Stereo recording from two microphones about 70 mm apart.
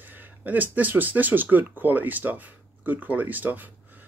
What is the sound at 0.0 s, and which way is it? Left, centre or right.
Speech, right.